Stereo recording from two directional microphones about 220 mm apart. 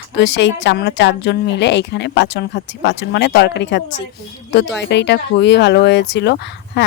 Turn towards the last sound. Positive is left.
turn(degrees=50)  # may be behind; listen again after turning